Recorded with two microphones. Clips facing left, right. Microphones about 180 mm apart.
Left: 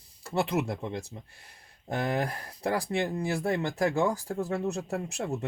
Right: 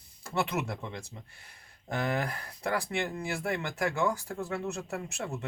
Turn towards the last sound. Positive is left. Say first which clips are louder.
# left 4 dB
turn(degrees=35)  # may be behind; listen again after turning